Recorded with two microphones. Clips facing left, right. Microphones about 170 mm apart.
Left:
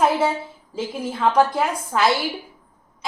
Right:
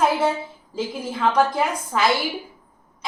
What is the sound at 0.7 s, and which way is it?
A woman's voice, centre (ahead or behind).